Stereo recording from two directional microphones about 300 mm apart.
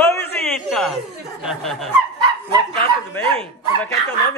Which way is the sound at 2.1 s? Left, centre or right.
Centre.